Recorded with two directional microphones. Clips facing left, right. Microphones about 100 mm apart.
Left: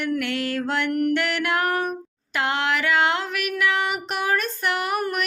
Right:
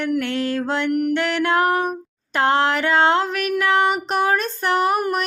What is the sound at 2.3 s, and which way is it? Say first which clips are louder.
Child singing: right 6 dB; 35° right (ahead or behind).